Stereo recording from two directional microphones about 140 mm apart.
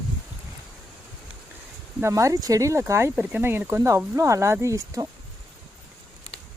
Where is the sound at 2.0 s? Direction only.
20° right (ahead or behind).